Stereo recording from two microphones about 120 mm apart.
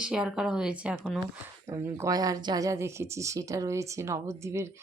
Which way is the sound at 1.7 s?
25° right (ahead or behind).